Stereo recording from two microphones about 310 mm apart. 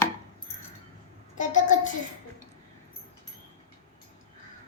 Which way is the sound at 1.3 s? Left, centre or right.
Left.